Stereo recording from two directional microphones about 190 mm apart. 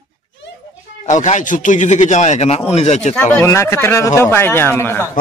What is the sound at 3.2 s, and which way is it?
Speech, 10° left (ahead or behind).